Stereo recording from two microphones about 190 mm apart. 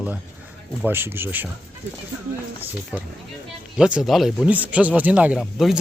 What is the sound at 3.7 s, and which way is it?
Speech, 5° right (ahead or behind).